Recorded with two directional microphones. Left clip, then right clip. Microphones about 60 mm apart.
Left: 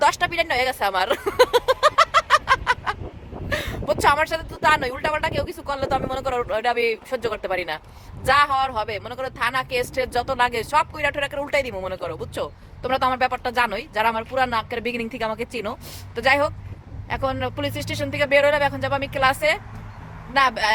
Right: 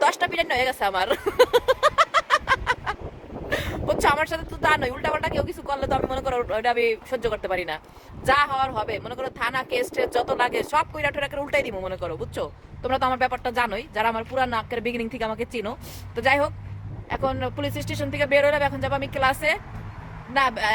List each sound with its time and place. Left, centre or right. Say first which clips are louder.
0.0 s a sound: left 2 dB; right
4.0 s speech: left 4 dB; right
11.8 s a woman's voice: left 1 dB; centre